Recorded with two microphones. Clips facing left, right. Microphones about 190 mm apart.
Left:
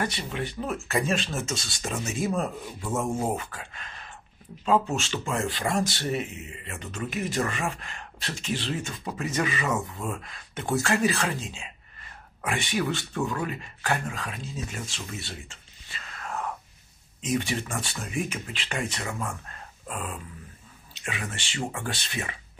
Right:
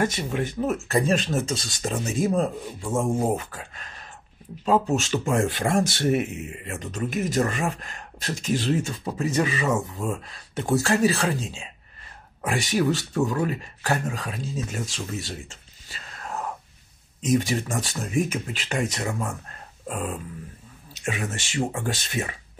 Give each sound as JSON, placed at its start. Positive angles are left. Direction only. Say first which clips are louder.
{"t": 0.3, "sound": "speech", "louder": "right 5 dB", "side_deg": -45}
{"t": 0.7, "sound": "speech", "louder": "right 4 dB", "side_deg": -35}